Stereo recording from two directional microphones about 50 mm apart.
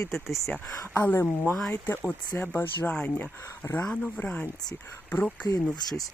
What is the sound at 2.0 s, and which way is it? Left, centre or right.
Speech, left.